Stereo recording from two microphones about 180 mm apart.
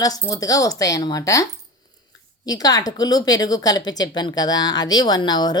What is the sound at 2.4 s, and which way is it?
A woman's voice, 20° left (ahead or behind).